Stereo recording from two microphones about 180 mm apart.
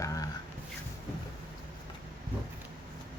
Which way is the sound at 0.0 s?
20° left (ahead or behind).